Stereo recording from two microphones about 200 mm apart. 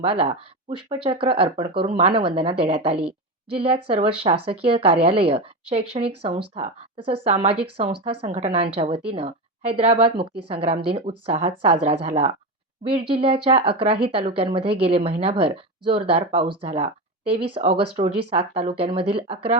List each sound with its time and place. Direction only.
0.0 s speech: 30° right (ahead or behind)